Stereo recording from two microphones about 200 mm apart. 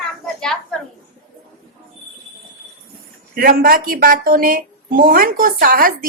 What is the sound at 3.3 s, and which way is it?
A woman's voice, 45° right (ahead or behind).